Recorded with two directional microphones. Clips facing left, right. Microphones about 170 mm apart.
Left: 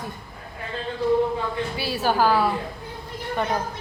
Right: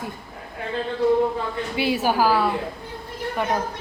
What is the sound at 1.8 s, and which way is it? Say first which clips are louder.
Speech: right 2 dB; 20° right (ahead or behind).